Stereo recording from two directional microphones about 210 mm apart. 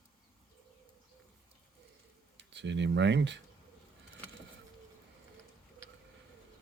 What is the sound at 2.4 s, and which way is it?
Speech, 55° right (ahead or behind).